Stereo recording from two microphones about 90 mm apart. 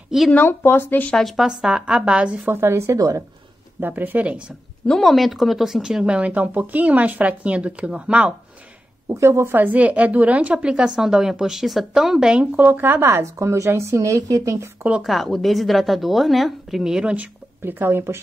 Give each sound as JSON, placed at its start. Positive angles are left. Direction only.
{"t": 0.3, "sound": "speech", "side_deg": 20}
{"t": 1.1, "sound": "speech", "side_deg": 0}
{"t": 2.4, "sound": "a woman's voice", "side_deg": -25}
{"t": 3.8, "sound": "a woman's voice", "side_deg": -20}
{"t": 4.8, "sound": "speech", "side_deg": 5}
{"t": 9.1, "sound": "a woman's voice", "side_deg": -30}
{"t": 15.0, "sound": "a woman's voice", "side_deg": 0}
{"t": 17.1, "sound": "speech", "side_deg": -20}